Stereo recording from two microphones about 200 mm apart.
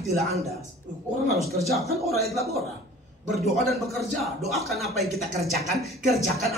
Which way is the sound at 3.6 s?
Centre (ahead or behind).